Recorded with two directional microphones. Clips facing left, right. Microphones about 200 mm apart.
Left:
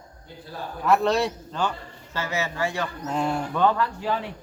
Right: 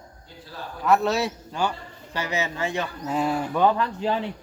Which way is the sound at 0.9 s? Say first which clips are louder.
Even; 5° right (ahead or behind).